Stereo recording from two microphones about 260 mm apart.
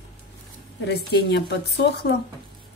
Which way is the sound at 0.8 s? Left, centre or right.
Left.